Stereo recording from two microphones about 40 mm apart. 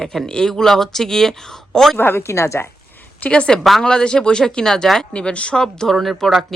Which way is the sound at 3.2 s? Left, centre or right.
Left.